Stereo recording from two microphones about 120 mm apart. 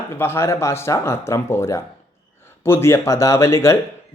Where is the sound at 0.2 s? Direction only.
20° left (ahead or behind).